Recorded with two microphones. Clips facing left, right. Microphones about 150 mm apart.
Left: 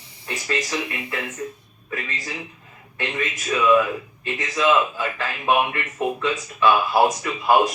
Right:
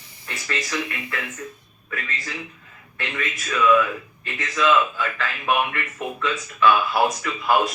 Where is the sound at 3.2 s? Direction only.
35° left (ahead or behind).